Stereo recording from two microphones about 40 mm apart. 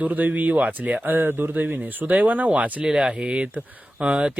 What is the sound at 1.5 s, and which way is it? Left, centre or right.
Speech, right.